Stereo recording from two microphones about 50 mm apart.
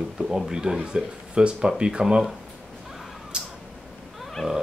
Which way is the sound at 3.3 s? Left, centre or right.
Centre.